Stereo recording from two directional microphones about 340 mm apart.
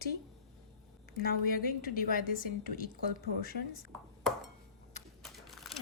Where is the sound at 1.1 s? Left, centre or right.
Left.